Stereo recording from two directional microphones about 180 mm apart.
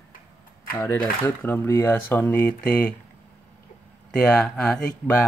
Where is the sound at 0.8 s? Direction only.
15° left (ahead or behind).